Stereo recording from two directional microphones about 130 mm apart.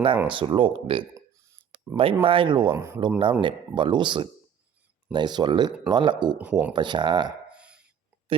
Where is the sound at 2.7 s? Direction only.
20° right (ahead or behind).